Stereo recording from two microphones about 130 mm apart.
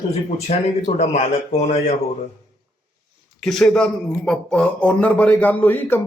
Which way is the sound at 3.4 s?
5° left (ahead or behind).